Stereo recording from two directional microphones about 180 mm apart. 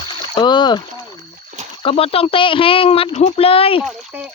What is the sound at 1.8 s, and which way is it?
Speech, 30° left (ahead or behind).